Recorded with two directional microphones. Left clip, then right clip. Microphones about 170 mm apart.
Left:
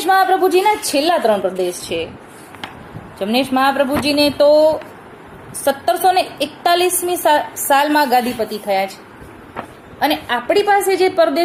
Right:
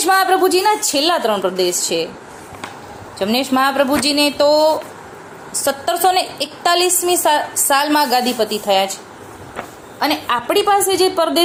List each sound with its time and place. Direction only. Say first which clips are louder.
0.0 s a woman's voice: even; 15° right (ahead or behind)
3.2 s a woman's voice: even; 15° right (ahead or behind)
10.0 s a woman's voice: even; 15° right (ahead or behind)